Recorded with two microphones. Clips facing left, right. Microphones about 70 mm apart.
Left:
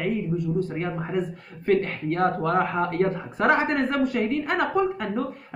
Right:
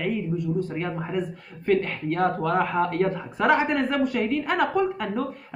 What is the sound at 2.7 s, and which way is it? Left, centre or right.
A woman's voice, centre.